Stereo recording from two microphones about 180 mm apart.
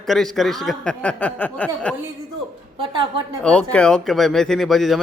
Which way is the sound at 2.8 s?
30° right (ahead or behind).